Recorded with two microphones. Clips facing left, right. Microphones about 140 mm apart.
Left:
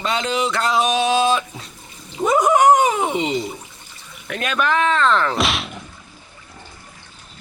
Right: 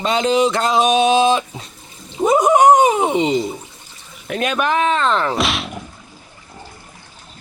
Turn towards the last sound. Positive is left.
turn(degrees=0)  # may be behind; listen again after turning